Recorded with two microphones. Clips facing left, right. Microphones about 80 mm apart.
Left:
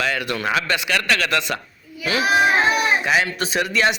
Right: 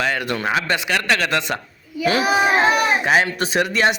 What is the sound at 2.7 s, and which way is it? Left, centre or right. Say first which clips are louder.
Speech: right 2 dB; right.